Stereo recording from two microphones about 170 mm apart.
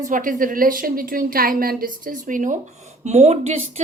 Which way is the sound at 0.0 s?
50° right (ahead or behind).